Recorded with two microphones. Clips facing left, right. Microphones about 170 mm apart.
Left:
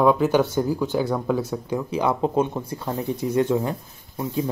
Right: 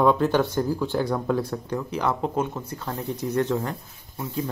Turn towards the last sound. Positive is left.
turn(degrees=25)  # may be behind; listen again after turning